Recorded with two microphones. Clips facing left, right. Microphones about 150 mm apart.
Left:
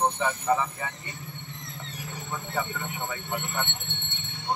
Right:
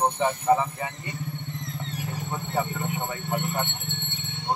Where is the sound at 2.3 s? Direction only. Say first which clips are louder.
Right 3 dB; 30° right (ahead or behind).